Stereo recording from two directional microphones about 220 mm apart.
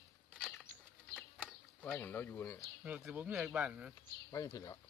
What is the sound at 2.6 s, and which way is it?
Speech, 5° right (ahead or behind).